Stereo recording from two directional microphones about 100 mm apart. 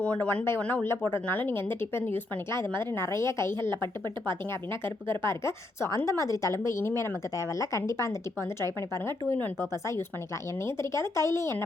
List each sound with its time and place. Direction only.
0.0 s speech: 10° left (ahead or behind)
5.0 s speech: 25° left (ahead or behind)